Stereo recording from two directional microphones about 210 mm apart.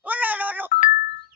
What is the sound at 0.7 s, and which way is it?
Ringtone, 35° left (ahead or behind).